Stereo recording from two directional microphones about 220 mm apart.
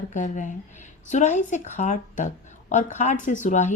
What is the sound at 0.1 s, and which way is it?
A woman's voice, 35° left (ahead or behind).